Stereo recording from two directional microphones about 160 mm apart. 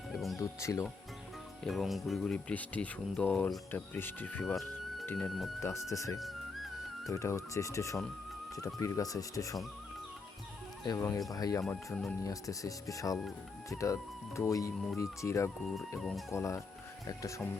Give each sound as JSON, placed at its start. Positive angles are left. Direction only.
{"t": 0.1, "sound": "music", "side_deg": 0}
{"t": 0.3, "sound": "speech", "side_deg": 20}
{"t": 1.6, "sound": "speech", "side_deg": 0}
{"t": 5.9, "sound": "speech", "side_deg": 20}
{"t": 10.8, "sound": "speech", "side_deg": 20}
{"t": 15.6, "sound": "speech", "side_deg": 0}
{"t": 16.3, "sound": "speech", "side_deg": 20}